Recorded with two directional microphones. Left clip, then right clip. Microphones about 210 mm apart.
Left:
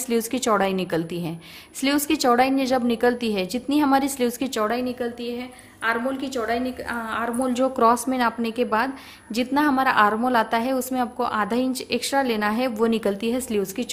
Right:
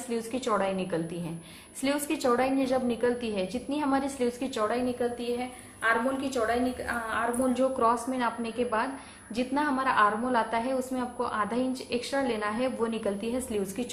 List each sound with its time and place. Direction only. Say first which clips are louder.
0.1 s a woman's voice: left 7 dB; 45° left (ahead or behind)